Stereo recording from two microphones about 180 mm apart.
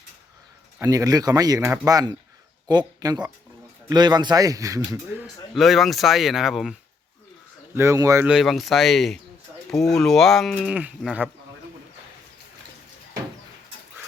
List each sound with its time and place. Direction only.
0.8 s speech: 20° right (ahead or behind)
5.2 s speech: centre (ahead or behind)
7.8 s speech: 15° right (ahead or behind)
8.3 s speech: centre (ahead or behind)